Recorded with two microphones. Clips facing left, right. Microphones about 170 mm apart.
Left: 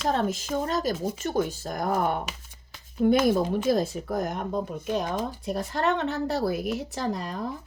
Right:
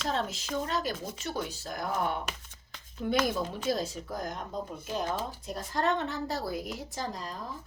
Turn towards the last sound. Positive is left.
turn(degrees=65)  # may be behind; listen again after turning